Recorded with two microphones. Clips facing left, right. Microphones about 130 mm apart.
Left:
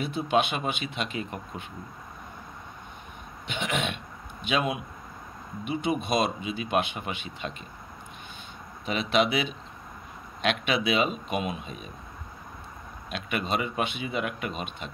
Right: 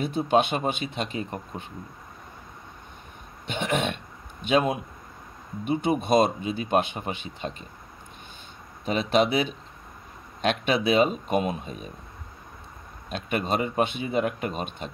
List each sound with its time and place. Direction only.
0.0 s speech: 35° right (ahead or behind)
3.4 s throat clearing: 40° right (ahead or behind)
4.5 s speech: 40° right (ahead or behind)
8.8 s speech: 35° right (ahead or behind)
13.1 s speech: 35° right (ahead or behind)